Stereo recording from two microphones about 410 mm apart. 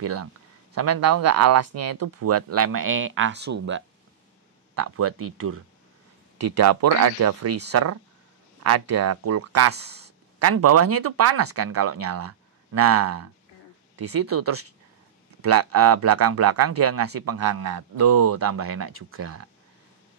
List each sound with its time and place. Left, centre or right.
0.0 s speech: right
4.7 s speech: right
6.3 s speech: right
13.9 s speech: right
14.2 s speech: right
17.7 s speech: right
18.2 s speech: right